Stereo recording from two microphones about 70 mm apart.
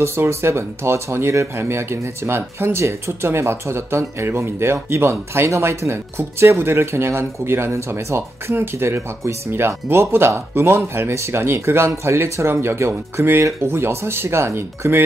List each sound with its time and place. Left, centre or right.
0.0 s speech: right